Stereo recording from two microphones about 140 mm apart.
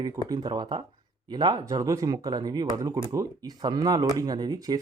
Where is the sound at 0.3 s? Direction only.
30° right (ahead or behind).